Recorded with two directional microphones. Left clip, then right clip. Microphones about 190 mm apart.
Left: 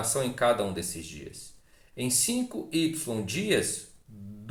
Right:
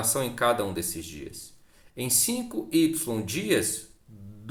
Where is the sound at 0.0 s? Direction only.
40° right (ahead or behind).